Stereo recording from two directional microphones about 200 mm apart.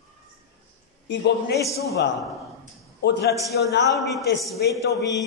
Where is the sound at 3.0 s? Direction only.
60° left (ahead or behind).